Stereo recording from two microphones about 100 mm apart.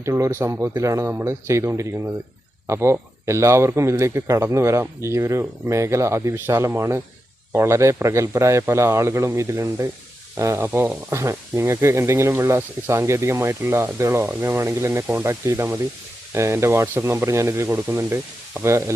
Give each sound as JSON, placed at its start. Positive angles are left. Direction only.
{"t": 0.0, "sound": "a man's voice", "side_deg": -30}